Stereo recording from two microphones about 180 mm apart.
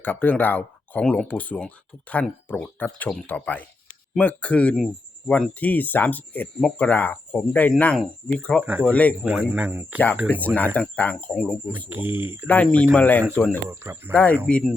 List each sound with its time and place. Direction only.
0.0 s speech: 10° left (ahead or behind)
8.6 s speech: 10° right (ahead or behind)
8.9 s speech: 10° left (ahead or behind)
9.2 s speech: 10° right (ahead or behind)
10.4 s speech: 10° left (ahead or behind)
11.9 s speech: 10° right (ahead or behind)
12.5 s speech: 5° left (ahead or behind)
13.7 s speech: 15° right (ahead or behind)
14.1 s speech: 10° left (ahead or behind)